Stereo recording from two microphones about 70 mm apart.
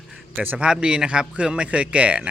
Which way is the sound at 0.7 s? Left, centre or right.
Centre.